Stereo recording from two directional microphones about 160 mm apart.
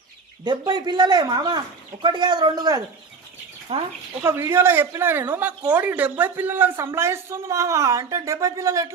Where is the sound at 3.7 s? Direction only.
40° right (ahead or behind).